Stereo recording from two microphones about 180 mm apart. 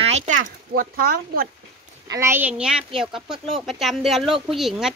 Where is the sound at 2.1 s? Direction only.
15° right (ahead or behind).